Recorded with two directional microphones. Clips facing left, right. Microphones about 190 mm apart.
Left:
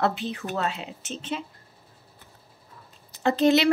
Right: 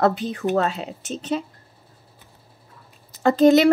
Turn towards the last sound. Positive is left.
turn(degrees=-45)  # may be behind; listen again after turning